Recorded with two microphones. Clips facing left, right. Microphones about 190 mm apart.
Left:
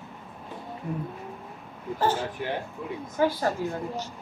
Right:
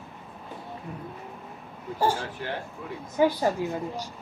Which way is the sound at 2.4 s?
15° left (ahead or behind).